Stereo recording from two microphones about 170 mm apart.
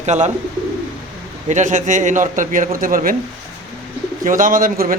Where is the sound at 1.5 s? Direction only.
45° right (ahead or behind).